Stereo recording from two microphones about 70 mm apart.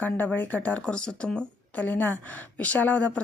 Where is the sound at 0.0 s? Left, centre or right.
Left.